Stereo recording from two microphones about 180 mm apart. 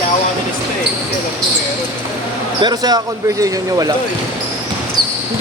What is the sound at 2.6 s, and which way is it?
Speech, 20° right (ahead or behind).